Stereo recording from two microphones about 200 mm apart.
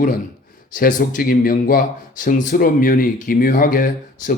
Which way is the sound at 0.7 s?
40° left (ahead or behind).